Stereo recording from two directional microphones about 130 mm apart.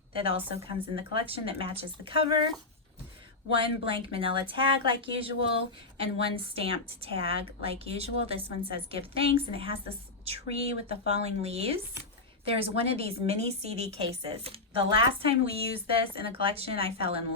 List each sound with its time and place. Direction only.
0.1 s a woman's voice: 45° right (ahead or behind)
3.5 s a woman's voice: 45° right (ahead or behind)